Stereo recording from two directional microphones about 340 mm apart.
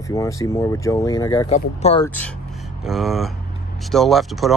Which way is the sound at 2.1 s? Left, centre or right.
Centre.